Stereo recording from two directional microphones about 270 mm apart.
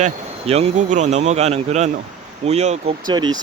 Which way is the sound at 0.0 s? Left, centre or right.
Right.